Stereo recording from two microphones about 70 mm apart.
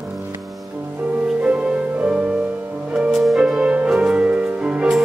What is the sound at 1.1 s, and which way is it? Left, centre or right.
Music, centre.